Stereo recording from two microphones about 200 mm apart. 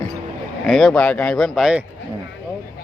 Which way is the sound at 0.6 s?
Centre (ahead or behind).